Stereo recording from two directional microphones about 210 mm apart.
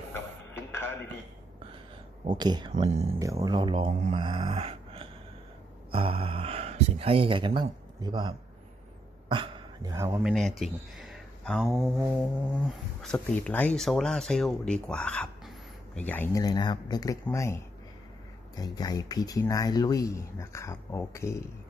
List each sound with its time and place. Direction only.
0.1 s a sound: 10° left (ahead or behind)
2.2 s speech: 20° right (ahead or behind)
2.7 s speech: 30° right (ahead or behind)
3.2 s speech: 15° right (ahead or behind)
4.1 s a sound: 25° right (ahead or behind)
5.9 s speech: 25° right (ahead or behind)
10.2 s speech: centre (ahead or behind)
13.0 s speech: 5° left (ahead or behind)
18.6 s speech: 20° left (ahead or behind)